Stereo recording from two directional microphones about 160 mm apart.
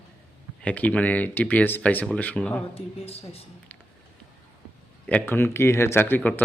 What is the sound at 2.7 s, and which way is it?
Speech, 40° left (ahead or behind).